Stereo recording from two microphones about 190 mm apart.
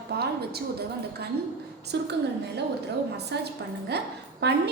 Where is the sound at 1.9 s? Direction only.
60° right (ahead or behind).